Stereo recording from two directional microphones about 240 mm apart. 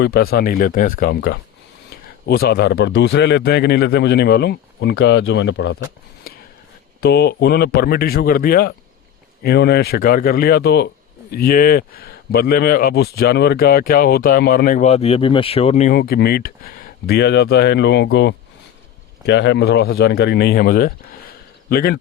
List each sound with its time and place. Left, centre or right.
0.0 s a man's voice: left
7.0 s a man's voice: left